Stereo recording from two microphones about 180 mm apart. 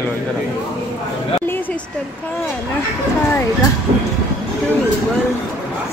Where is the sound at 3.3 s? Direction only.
15° left (ahead or behind).